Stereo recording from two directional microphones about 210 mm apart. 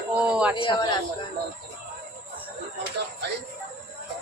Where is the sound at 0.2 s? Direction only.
5° right (ahead or behind).